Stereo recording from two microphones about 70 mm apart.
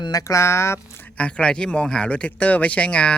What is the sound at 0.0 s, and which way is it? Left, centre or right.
Speech, left.